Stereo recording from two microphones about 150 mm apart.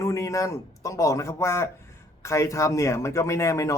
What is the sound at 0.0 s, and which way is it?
Speech, 20° left (ahead or behind).